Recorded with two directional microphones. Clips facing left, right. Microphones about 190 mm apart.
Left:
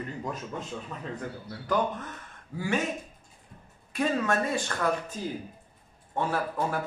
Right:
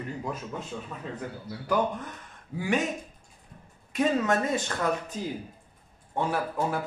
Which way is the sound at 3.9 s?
20° right (ahead or behind).